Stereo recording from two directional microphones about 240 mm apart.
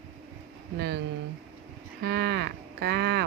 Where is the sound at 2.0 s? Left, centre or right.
Right.